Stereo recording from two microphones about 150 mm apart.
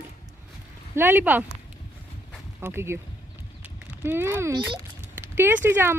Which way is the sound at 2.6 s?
15° right (ahead or behind).